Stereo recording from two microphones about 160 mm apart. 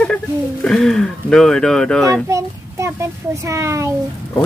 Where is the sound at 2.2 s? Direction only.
20° right (ahead or behind).